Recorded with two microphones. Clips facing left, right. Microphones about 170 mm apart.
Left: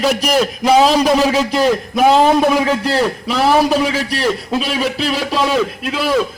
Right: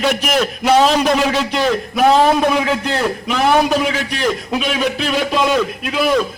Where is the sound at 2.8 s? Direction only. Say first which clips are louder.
Left 2 dB; 35° left (ahead or behind).